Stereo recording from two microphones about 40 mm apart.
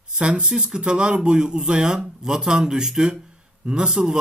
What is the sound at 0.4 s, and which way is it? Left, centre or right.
Speech, centre.